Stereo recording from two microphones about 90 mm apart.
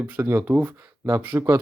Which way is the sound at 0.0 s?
25° right (ahead or behind).